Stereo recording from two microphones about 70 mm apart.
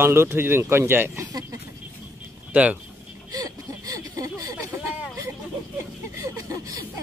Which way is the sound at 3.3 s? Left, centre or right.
Right.